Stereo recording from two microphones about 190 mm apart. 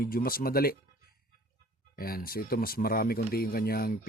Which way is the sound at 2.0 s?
50° left (ahead or behind).